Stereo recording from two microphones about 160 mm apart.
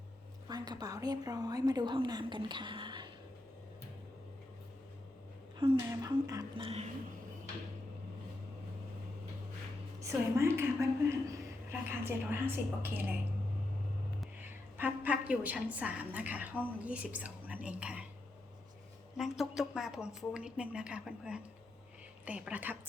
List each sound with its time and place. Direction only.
0.4 s a woman's voice: 25° right (ahead or behind)
5.5 s a woman's voice: 30° right (ahead or behind)
6.6 s speech: 40° right (ahead or behind)
10.0 s a woman's voice: 20° right (ahead or behind)
14.8 s a woman's voice: 10° right (ahead or behind)
19.1 s a woman's voice: 5° right (ahead or behind)